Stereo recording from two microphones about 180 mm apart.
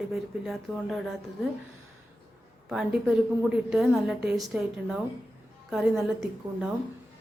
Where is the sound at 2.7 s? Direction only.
5° right (ahead or behind).